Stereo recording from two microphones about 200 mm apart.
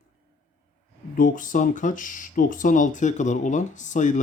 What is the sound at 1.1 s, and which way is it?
Speech, 40° left (ahead or behind).